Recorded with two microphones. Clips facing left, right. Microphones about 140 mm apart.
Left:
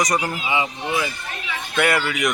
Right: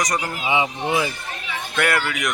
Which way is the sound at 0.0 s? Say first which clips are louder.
Left 2 dB; 10° left (ahead or behind).